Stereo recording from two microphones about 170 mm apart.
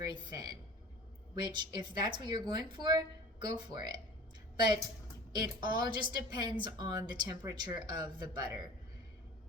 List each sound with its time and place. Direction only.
0.0 s a woman's voice: 25° right (ahead or behind)